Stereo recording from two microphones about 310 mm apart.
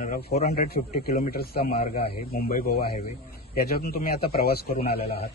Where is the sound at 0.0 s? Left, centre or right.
Left.